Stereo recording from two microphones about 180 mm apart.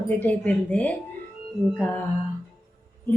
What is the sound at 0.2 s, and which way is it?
Speech, 10° left (ahead or behind).